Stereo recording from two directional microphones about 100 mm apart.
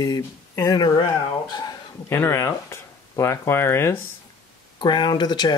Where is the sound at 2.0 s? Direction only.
25° left (ahead or behind).